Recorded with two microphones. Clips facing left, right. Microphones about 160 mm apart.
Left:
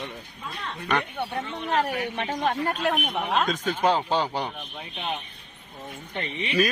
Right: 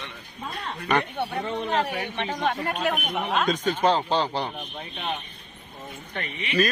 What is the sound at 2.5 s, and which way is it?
Speech, 30° left (ahead or behind).